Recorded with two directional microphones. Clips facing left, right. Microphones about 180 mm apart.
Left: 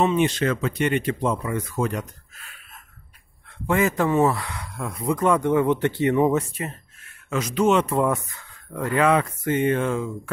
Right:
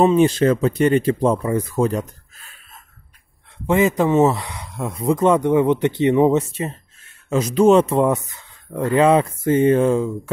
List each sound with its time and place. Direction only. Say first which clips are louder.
0.0 s speech: right 6 dB; 35° right (ahead or behind)
3.6 s speech: right 4 dB; 20° right (ahead or behind)